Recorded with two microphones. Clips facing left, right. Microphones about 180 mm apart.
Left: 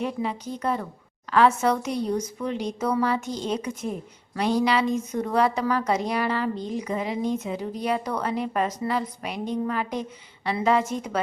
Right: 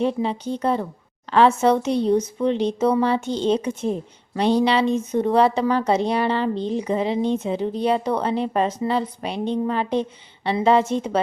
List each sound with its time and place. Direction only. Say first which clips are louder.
0.0 s speech: right 6 dB; 30° right (ahead or behind)